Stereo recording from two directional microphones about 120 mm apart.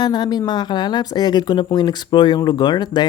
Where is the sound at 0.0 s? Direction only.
35° left (ahead or behind).